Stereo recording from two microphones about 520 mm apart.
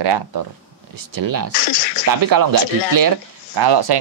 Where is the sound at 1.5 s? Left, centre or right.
Left.